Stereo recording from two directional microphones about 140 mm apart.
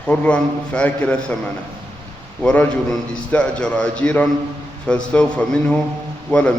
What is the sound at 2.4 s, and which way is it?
A man's voice, 10° left (ahead or behind).